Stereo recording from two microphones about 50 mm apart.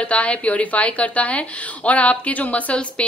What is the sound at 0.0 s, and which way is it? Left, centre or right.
A woman's voice, left.